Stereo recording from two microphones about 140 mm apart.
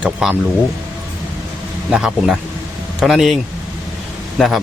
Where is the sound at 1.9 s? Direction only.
5° right (ahead or behind).